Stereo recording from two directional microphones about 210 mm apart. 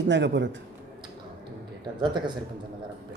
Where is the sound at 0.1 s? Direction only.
55° right (ahead or behind).